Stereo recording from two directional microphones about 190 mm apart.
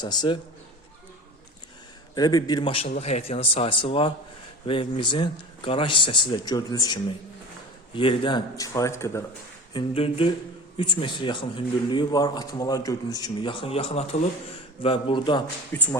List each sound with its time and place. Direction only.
0.0 s a man's voice: 20° left (ahead or behind)
2.1 s a man's voice: 20° left (ahead or behind)
9.7 s a man's voice: 30° left (ahead or behind)
15.7 s speech: 10° left (ahead or behind)